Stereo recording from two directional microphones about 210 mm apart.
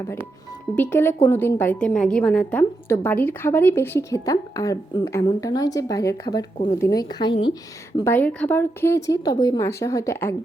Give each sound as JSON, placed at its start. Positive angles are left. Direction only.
{"t": 0.0, "sound": "a woman's voice", "side_deg": 10}
{"t": 7.9, "sound": "a woman's voice", "side_deg": 10}